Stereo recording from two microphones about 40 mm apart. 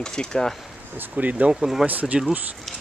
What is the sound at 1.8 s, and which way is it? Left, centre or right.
Speech, right.